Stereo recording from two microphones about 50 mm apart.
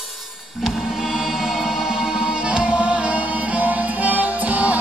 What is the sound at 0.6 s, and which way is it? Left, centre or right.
Music, centre.